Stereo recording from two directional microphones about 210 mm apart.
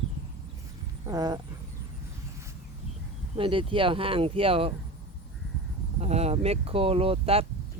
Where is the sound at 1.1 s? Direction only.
20° right (ahead or behind).